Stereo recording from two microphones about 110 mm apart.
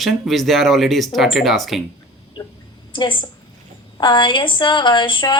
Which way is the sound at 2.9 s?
50° left (ahead or behind).